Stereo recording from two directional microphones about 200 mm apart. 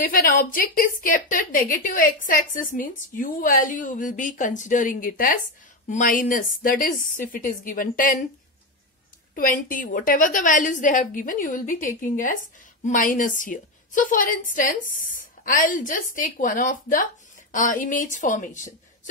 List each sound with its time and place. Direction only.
0.0 s a woman's voice: 45° left (ahead or behind)
9.3 s a woman's voice: 45° left (ahead or behind)